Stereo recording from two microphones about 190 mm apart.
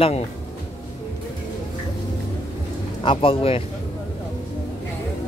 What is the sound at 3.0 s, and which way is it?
Speech, 25° left (ahead or behind).